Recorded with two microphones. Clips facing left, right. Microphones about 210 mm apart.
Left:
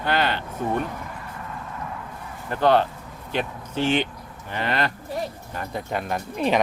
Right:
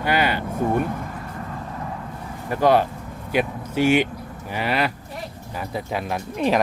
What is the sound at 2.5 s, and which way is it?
A man's voice, 10° right (ahead or behind).